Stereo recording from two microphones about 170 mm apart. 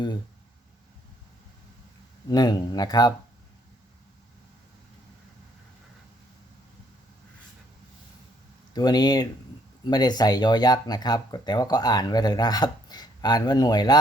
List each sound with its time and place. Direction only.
2.3 s speech: 25° left (ahead or behind)
8.7 s speech: 25° left (ahead or behind)